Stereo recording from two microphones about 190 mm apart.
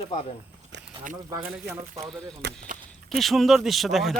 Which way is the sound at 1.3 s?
10° right (ahead or behind).